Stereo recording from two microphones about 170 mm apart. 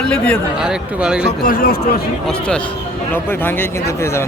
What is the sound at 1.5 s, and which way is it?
Speech, 60° left (ahead or behind).